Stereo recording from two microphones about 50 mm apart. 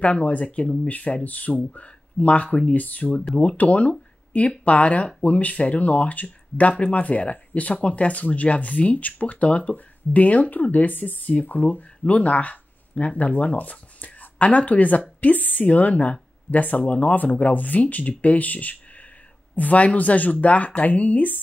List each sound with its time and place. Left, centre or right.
0.0 s speech: left